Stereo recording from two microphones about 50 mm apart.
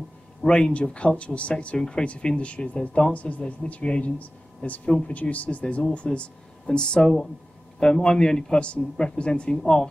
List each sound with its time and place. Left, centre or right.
0.5 s speech: centre
4.8 s speech: centre
5.1 s speech: left; by 9.8 s centre